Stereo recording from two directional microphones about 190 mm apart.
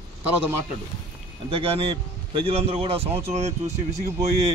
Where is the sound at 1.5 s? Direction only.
30° right (ahead or behind).